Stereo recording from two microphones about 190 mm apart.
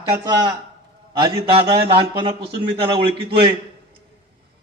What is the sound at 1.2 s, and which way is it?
A man's voice, 25° right (ahead or behind).